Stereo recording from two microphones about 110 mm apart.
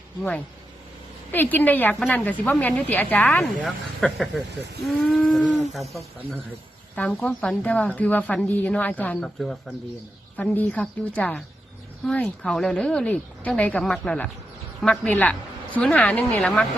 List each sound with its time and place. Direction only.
0.2 s speech: 10° left (ahead or behind)
3.4 s speech: centre (ahead or behind)
6.9 s speech: 10° left (ahead or behind)
10.3 s speech: 15° left (ahead or behind)